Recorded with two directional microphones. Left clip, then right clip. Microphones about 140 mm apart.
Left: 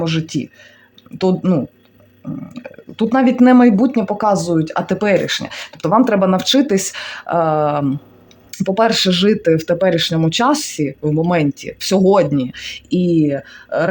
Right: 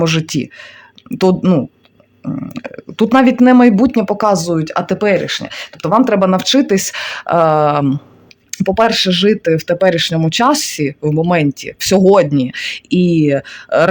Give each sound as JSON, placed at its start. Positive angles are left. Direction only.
{"t": 0.0, "sound": "speech", "side_deg": -40}
{"t": 3.3, "sound": "speech", "side_deg": -15}